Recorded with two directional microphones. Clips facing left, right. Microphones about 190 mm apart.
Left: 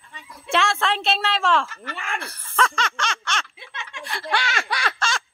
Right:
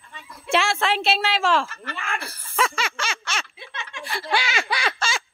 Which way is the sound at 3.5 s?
15° left (ahead or behind).